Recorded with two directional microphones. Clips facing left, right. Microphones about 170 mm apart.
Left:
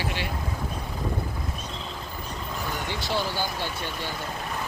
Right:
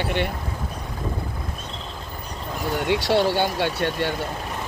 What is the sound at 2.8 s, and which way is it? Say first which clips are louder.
Speech: right 11 dB; 70° right (ahead or behind).